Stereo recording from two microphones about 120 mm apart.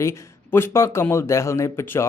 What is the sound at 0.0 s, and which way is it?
Speech, 20° left (ahead or behind).